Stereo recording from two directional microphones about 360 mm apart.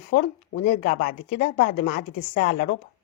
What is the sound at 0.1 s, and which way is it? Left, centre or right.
Speech, left.